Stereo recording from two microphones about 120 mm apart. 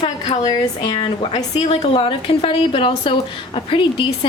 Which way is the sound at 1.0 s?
50° left (ahead or behind).